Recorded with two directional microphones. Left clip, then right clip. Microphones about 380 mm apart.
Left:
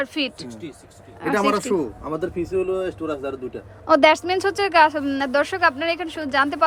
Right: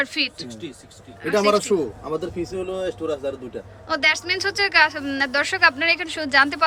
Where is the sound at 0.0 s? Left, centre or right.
Centre.